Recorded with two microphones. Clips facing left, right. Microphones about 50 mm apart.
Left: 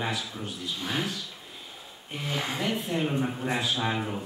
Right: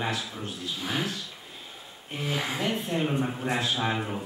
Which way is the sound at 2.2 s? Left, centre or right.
Centre.